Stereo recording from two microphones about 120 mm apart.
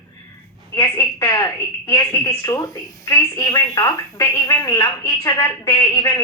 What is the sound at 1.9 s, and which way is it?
Speech, 20° left (ahead or behind).